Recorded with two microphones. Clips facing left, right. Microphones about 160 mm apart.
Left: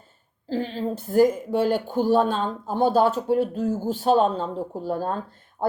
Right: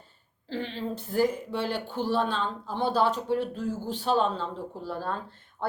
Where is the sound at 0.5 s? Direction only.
40° left (ahead or behind).